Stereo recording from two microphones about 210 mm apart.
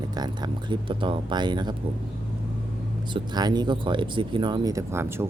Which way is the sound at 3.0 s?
20° right (ahead or behind).